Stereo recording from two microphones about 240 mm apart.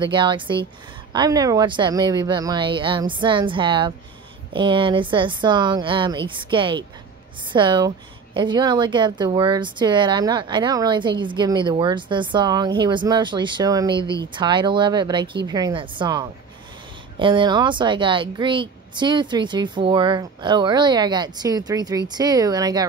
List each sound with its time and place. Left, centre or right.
0.0 s a woman's voice: centre